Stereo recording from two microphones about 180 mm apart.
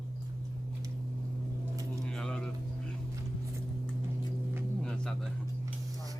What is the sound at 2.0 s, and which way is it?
Music, 5° left (ahead or behind).